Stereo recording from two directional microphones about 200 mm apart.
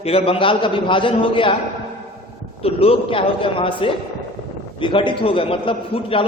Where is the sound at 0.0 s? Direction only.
30° left (ahead or behind).